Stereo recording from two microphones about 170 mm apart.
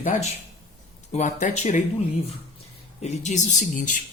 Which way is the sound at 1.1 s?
45° left (ahead or behind).